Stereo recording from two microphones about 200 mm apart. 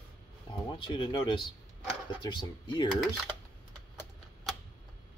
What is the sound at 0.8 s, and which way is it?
Speech, 25° left (ahead or behind).